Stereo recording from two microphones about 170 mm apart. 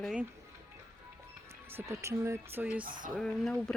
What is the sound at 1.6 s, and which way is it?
Speech, 15° right (ahead or behind).